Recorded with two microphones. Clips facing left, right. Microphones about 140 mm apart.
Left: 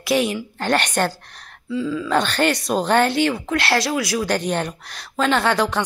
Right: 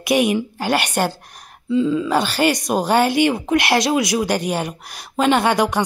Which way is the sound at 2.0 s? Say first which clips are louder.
Right 1 dB; 10° right (ahead or behind).